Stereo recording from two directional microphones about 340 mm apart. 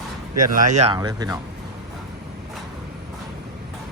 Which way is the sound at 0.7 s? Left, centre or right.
Centre.